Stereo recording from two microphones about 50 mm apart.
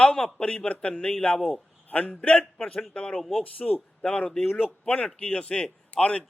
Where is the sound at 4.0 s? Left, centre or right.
Centre.